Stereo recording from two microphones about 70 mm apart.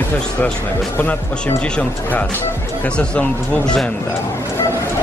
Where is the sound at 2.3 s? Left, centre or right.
Left.